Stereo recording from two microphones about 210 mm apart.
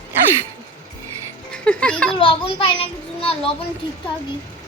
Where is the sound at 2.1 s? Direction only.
25° left (ahead or behind).